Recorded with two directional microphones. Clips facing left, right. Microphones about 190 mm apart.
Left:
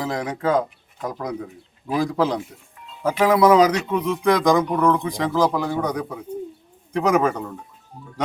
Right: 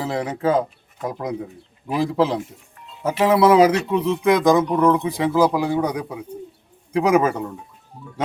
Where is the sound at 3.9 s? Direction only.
30° right (ahead or behind).